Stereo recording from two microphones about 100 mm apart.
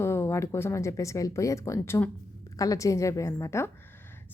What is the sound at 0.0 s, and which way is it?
Speech, 25° left (ahead or behind).